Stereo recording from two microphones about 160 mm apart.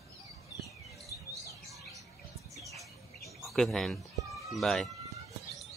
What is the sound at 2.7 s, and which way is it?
Bird, centre (ahead or behind).